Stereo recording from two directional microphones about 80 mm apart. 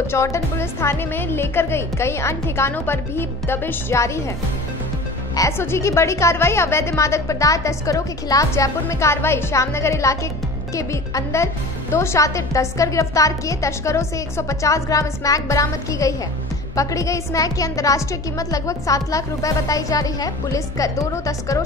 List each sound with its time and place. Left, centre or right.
0.0 s a woman's voice: left
5.6 s a woman's voice: left